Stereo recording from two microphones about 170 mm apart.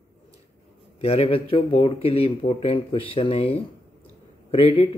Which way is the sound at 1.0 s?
35° left (ahead or behind).